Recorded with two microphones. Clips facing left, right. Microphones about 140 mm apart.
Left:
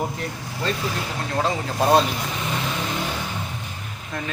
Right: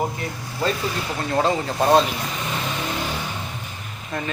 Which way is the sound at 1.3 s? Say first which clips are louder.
Right 4 dB; centre (ahead or behind).